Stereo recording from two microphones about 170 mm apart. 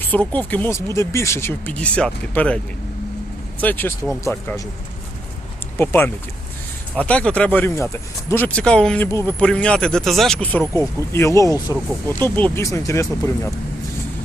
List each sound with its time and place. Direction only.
0.0 s speech: 10° left (ahead or behind)
3.6 s speech: 10° left (ahead or behind)
5.7 s speech: 15° left (ahead or behind)